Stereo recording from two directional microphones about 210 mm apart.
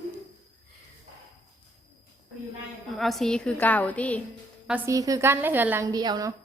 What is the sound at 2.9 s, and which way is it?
A woman's voice, centre (ahead or behind).